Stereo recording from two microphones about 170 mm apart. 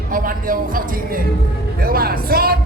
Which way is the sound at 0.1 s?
55° right (ahead or behind).